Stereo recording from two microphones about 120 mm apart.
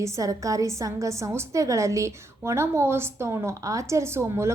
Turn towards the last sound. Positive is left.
turn(degrees=-20)  # may be behind; listen again after turning